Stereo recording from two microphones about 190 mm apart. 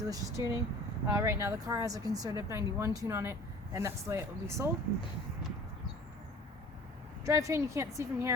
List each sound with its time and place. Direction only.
0.0 s speech: 20° right (ahead or behind)
7.3 s speech: 15° right (ahead or behind)